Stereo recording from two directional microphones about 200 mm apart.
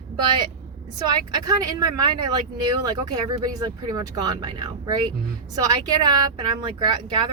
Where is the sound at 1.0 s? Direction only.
20° right (ahead or behind).